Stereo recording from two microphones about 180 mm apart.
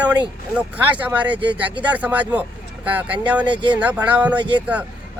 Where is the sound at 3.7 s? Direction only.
10° right (ahead or behind).